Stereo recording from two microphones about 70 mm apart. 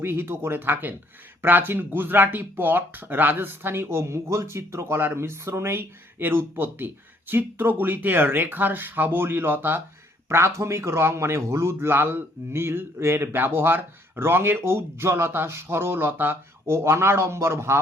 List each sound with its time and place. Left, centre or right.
0.0 s speech: right